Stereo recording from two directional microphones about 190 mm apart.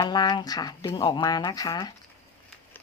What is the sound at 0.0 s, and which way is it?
Speech, 20° left (ahead or behind).